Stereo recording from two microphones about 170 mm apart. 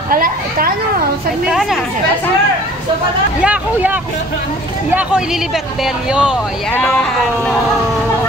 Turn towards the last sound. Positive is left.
turn(degrees=-5)  # may be behind; listen again after turning